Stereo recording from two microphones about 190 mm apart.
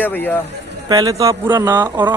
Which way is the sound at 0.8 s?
20° right (ahead or behind).